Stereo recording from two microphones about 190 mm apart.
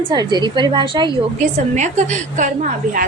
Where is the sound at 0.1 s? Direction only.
20° right (ahead or behind).